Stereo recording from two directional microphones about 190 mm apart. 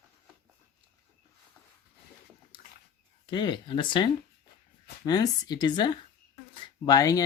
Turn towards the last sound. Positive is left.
turn(degrees=20)  # may be behind; listen again after turning